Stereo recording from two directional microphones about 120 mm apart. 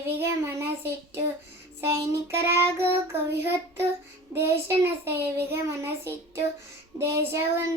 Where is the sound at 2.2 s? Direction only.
20° right (ahead or behind).